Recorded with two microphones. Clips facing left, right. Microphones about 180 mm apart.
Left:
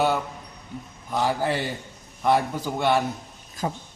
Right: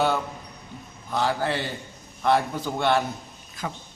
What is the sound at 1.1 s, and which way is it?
A man's voice, 10° left (ahead or behind).